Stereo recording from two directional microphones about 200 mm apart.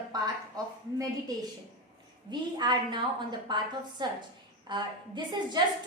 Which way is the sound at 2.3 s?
20° right (ahead or behind).